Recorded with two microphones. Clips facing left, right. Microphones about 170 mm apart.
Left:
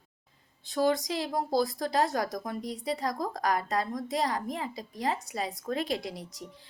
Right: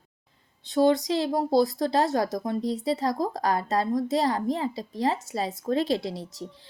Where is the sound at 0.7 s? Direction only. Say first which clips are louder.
Right 6 dB; 25° right (ahead or behind).